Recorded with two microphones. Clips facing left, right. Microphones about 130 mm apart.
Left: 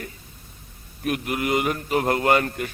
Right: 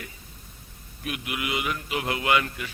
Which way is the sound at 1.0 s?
45° left (ahead or behind).